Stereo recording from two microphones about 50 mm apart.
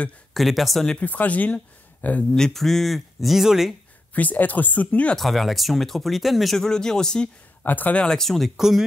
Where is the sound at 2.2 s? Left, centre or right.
Centre.